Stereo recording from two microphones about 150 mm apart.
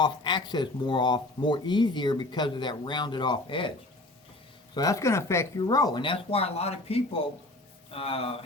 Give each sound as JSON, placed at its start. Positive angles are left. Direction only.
{"t": 0.0, "sound": "speech", "side_deg": 30}
{"t": 4.7, "sound": "speech", "side_deg": 25}